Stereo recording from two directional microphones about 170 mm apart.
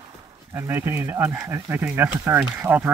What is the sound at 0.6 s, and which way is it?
Speech, 15° right (ahead or behind).